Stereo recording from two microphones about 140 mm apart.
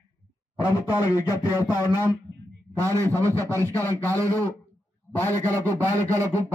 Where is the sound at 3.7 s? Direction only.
10° left (ahead or behind).